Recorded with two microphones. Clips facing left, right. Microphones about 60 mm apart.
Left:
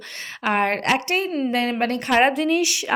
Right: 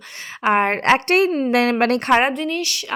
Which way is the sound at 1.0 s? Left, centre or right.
Right.